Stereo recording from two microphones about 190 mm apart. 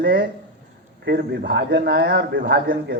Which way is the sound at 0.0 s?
55° right (ahead or behind).